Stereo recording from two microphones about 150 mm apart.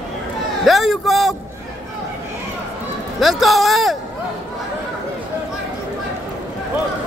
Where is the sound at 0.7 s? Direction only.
Centre (ahead or behind).